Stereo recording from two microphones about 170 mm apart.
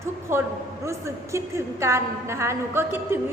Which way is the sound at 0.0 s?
15° right (ahead or behind).